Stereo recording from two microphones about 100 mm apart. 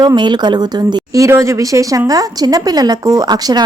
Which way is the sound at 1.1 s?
30° right (ahead or behind).